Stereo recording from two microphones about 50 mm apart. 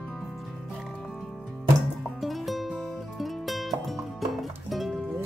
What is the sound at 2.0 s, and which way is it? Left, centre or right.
Music, centre.